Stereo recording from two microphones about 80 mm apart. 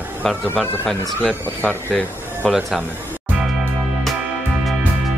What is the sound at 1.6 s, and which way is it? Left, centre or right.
Speech, left.